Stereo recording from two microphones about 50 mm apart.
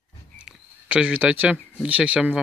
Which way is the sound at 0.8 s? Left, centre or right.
Right.